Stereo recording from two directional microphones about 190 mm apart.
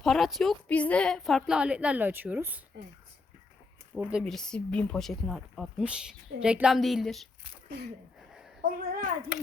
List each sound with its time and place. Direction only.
0.0 s speech: centre (ahead or behind)
3.9 s speech: 5° right (ahead or behind)
8.3 s a sound: centre (ahead or behind)
8.8 s a child's voice: 50° right (ahead or behind)